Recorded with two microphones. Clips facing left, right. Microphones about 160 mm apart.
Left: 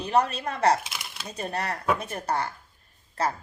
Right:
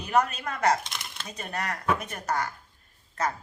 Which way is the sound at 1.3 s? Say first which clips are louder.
Left 3 dB; 30° left (ahead or behind).